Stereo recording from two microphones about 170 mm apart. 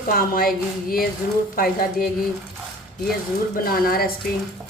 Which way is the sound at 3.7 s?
60° left (ahead or behind).